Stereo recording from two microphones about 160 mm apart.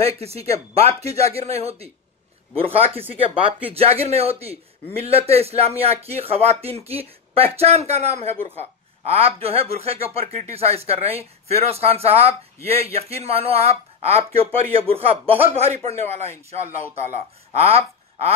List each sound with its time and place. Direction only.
0.0 s speech: 40° right (ahead or behind)
17.6 s speech: 40° right (ahead or behind)